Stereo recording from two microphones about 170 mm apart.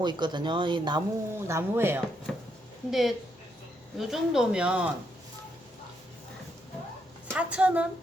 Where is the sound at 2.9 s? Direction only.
Centre (ahead or behind).